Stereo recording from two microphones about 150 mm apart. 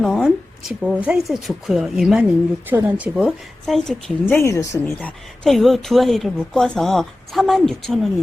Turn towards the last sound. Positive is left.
turn(degrees=0)  # may be behind; listen again after turning